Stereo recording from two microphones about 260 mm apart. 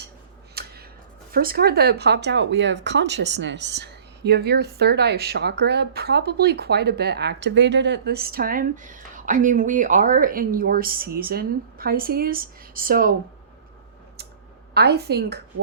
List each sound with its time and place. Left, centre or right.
0.5 s a sound: right
1.3 s speech: right
14.7 s speech: right